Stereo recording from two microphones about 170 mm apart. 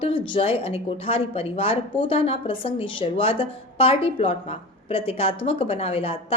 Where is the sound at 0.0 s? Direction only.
30° left (ahead or behind).